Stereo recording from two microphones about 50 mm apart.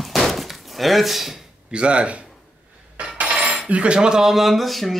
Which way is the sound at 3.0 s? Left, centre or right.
Right.